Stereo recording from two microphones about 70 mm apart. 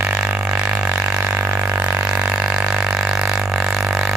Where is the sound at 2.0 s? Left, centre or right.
Centre.